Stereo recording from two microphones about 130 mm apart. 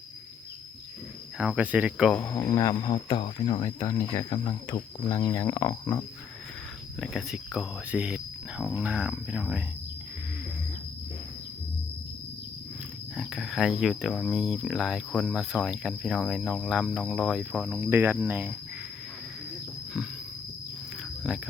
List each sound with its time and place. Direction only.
1.4 s speech: 10° right (ahead or behind)
2.2 s speech: 30° left (ahead or behind)
2.8 s speech: 40° left (ahead or behind)
3.8 s speech: 25° left (ahead or behind)
7.0 s speech: 5° right (ahead or behind)
13.1 s speech: 5° right (ahead or behind)
17.7 s speech: 15° right (ahead or behind)
21.2 s speech: 10° right (ahead or behind)